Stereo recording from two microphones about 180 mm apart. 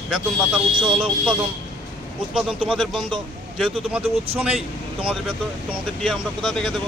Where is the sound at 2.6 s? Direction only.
Centre (ahead or behind).